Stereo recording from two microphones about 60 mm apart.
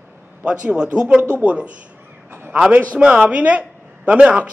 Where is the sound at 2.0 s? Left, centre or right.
Right.